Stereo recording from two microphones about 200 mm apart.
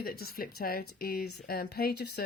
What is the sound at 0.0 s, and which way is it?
Speech, 50° left (ahead or behind).